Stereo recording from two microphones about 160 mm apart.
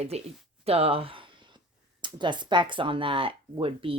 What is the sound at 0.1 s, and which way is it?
Speech, 40° right (ahead or behind).